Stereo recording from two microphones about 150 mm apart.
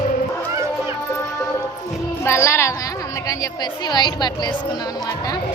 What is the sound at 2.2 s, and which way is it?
A woman's voice, 15° left (ahead or behind).